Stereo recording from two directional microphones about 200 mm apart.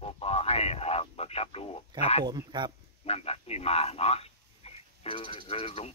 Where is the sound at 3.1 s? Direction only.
30° left (ahead or behind).